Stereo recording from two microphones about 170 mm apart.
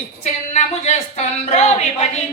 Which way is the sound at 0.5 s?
40° left (ahead or behind).